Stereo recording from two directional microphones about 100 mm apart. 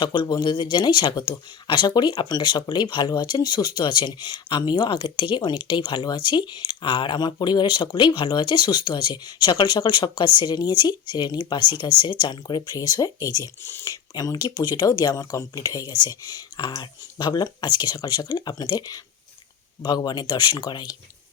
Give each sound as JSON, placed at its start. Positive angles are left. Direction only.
{"t": 0.0, "sound": "speech", "side_deg": 50}